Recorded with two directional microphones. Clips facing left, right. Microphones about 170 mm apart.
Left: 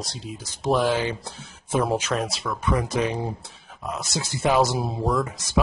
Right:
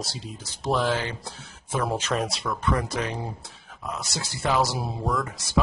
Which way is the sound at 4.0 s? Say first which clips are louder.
Left 6 dB; 20° left (ahead or behind).